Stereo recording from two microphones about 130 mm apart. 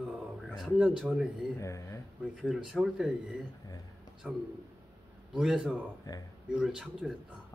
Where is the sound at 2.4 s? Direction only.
Centre (ahead or behind).